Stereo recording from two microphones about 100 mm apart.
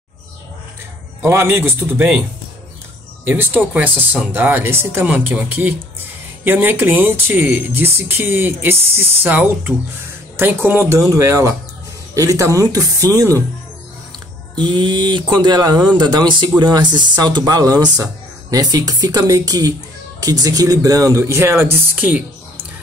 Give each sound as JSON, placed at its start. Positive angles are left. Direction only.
{"t": 1.2, "sound": "speech", "side_deg": -25}
{"t": 3.3, "sound": "speech", "side_deg": -20}
{"t": 11.0, "sound": "speech", "side_deg": -30}
{"t": 14.5, "sound": "speech", "side_deg": -50}